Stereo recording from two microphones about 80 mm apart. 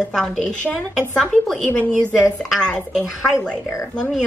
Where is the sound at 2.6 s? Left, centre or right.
Centre.